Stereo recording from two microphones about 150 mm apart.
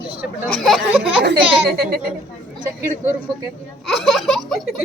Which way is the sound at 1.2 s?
90° right.